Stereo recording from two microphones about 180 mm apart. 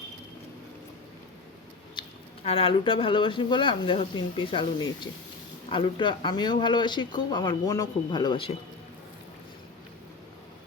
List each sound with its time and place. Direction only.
2.0 s speech: 35° left (ahead or behind)
5.7 s speech: 25° left (ahead or behind)